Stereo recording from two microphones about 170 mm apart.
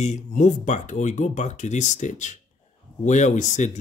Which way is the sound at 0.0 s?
45° left (ahead or behind).